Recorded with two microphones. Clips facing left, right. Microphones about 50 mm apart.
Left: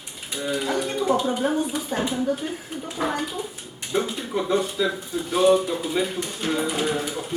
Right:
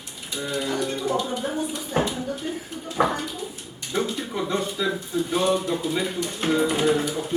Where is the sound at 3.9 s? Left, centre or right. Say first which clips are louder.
Left 1 dB; centre.